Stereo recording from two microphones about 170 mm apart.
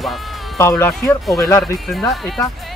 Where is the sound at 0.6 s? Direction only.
15° left (ahead or behind).